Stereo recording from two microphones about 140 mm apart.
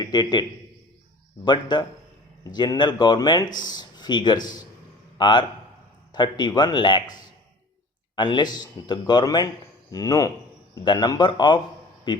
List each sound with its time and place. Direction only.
0.0 s a man's voice: 30° left (ahead or behind)
1.5 s speech: 30° left (ahead or behind)
8.1 s a man's voice: 30° left (ahead or behind)